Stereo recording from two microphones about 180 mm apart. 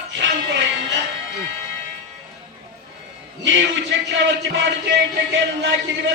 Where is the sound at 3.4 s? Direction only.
90° right.